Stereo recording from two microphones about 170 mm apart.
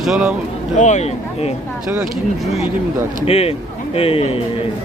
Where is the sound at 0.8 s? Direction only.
45° left (ahead or behind).